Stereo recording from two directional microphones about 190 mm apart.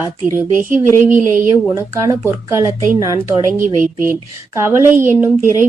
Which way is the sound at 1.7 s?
15° right (ahead or behind).